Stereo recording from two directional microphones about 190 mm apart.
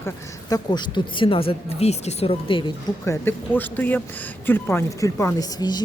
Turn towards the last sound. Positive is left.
turn(degrees=20)  # may be behind; listen again after turning